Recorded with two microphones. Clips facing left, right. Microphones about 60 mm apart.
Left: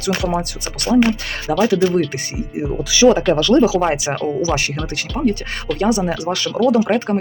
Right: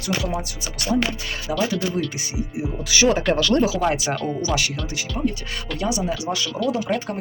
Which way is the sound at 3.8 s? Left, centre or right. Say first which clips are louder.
Left 3 dB; left.